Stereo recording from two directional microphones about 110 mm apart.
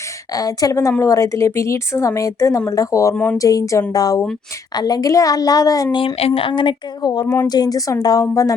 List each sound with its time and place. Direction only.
0.3 s a woman's voice: 35° left (ahead or behind)
6.1 s a woman's voice: 60° left (ahead or behind); by 8.3 s 35° left (ahead or behind)